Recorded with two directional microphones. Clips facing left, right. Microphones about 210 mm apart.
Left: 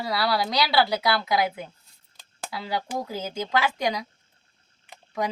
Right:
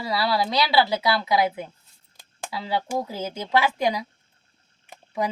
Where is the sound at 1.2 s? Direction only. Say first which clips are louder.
Right 2 dB; 30° right (ahead or behind).